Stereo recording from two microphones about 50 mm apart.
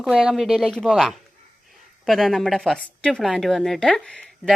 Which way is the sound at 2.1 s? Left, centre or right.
Centre.